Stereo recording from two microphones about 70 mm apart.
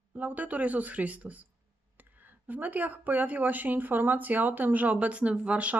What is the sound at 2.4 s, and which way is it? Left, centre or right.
Speech, right.